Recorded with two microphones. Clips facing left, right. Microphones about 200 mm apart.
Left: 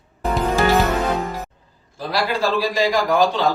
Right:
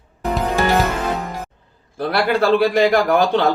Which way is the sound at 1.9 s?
60° right (ahead or behind).